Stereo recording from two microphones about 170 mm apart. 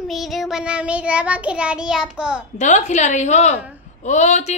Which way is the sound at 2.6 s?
45° left (ahead or behind).